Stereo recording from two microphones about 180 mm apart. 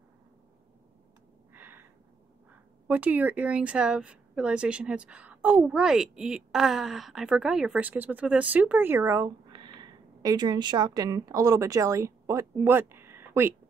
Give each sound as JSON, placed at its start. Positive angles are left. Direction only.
{"t": 1.5, "sound": "a sound", "side_deg": -10}
{"t": 2.9, "sound": "speech", "side_deg": -10}
{"t": 9.5, "sound": "speech", "side_deg": -25}